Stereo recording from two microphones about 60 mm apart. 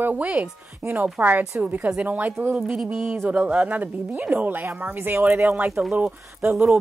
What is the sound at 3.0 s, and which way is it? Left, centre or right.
Speech, right.